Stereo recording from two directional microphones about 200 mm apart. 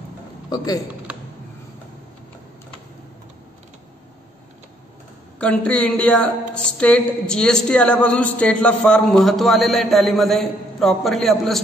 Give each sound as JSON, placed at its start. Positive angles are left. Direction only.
{"t": 0.5, "sound": "speech", "side_deg": 20}
{"t": 5.4, "sound": "a woman's voice", "side_deg": 5}